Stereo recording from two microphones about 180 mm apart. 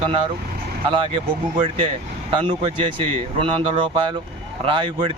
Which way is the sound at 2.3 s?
30° right (ahead or behind).